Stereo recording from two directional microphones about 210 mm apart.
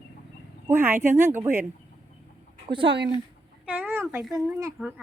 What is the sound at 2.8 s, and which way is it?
Speech, 55° right (ahead or behind).